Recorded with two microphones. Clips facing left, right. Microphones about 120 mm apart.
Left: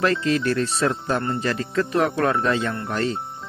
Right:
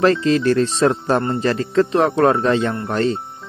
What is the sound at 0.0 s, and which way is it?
A man's voice, 30° right (ahead or behind).